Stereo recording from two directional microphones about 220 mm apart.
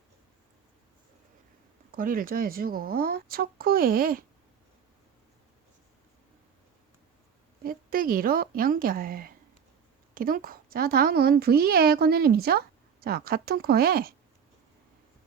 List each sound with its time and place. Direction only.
1.9 s speech: 40° right (ahead or behind)
7.6 s a woman's voice: 40° right (ahead or behind)